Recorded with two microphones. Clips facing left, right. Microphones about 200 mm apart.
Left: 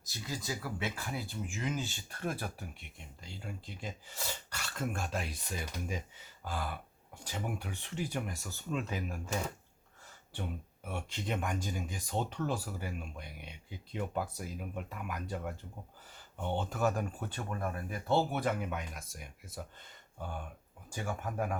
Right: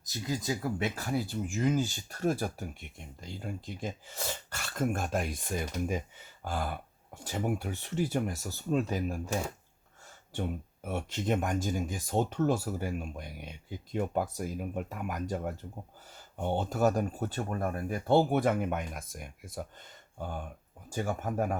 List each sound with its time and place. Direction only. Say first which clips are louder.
0.5 s speech: right 4 dB; 40° right (ahead or behind)
10.8 s speech: right 7 dB; 45° right (ahead or behind)
20.9 s speech: right 6 dB; 40° right (ahead or behind)